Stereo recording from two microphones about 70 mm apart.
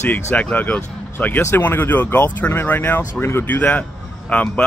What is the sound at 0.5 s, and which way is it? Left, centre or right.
Speech, left.